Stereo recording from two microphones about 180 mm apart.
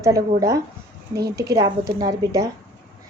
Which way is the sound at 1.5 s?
20° right (ahead or behind).